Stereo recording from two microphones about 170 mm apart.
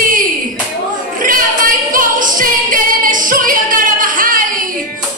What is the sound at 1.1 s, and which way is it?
Singing, 55° right (ahead or behind).